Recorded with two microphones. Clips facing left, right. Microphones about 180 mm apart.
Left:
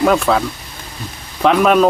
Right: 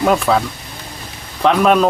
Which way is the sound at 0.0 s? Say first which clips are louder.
Left 1 dB; centre (ahead or behind).